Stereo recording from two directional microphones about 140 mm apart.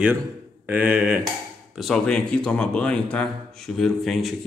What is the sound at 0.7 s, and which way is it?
Speech, 10° right (ahead or behind).